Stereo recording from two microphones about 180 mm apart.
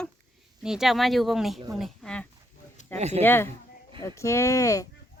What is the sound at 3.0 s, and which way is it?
Speech, 35° right (ahead or behind).